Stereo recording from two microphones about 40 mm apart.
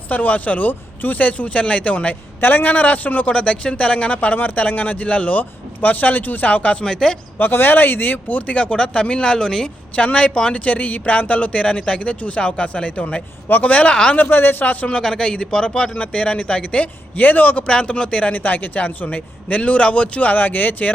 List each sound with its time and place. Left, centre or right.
0.1 s a man's voice: left
2.4 s a man's voice: left
6.8 s a man's voice: centre
7.3 s speech: left; by 9.7 s centre
9.9 s speech: left
10.6 s a man's voice: left
13.5 s a man's voice: left
14.2 s speech: left
14.6 s a man's voice: left
14.8 s speech: centre
17.2 s speech: left
17.7 s speech: left
18.3 s a man's voice: left